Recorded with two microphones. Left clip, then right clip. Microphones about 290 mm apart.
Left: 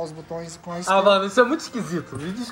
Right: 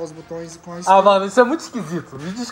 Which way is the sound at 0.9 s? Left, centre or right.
Right.